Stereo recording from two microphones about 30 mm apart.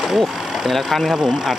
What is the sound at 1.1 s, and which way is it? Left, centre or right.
Speech, centre.